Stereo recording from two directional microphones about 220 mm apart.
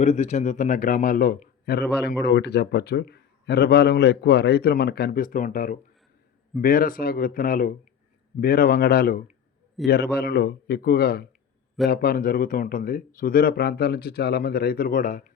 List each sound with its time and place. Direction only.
0.0 s speech: 30° left (ahead or behind)